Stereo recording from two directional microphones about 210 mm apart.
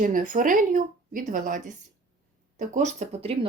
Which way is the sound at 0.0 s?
40° right (ahead or behind).